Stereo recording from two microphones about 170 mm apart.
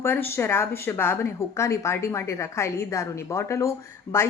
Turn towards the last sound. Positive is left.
turn(degrees=15)  # may be behind; listen again after turning